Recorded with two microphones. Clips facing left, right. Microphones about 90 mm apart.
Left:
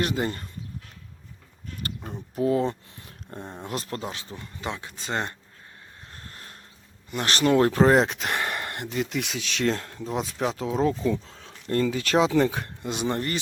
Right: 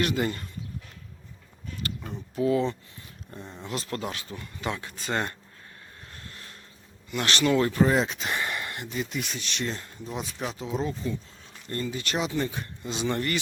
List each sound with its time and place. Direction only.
0.0 s speech: 30° left (ahead or behind)
2.3 s speech: 40° left (ahead or behind)
3.3 s speech: 50° left (ahead or behind)
3.9 s speech: 25° left (ahead or behind)
6.1 s a sound: 35° left (ahead or behind)
7.1 s speech: 35° left (ahead or behind)
7.6 s speech: 70° left (ahead or behind)
13.1 s speech: 35° left (ahead or behind)